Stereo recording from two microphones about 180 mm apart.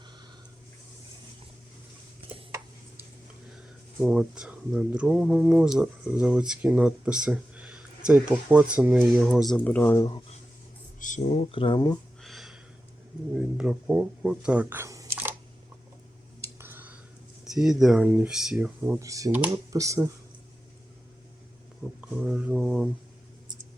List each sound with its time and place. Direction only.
4.0 s speech: 5° right (ahead or behind); by 10.1 s 15° left (ahead or behind)
11.0 s speech: 40° left (ahead or behind); by 11.9 s 25° left (ahead or behind)
12.2 s a sound: centre (ahead or behind)
13.6 s speech: 5° right (ahead or behind)
16.4 s a sound: 15° right (ahead or behind)
17.4 s speech: centre (ahead or behind); by 20.1 s 15° right (ahead or behind)
22.1 s speech: 5° right (ahead or behind)